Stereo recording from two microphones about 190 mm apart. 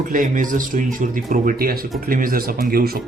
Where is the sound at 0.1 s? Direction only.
45° right (ahead or behind).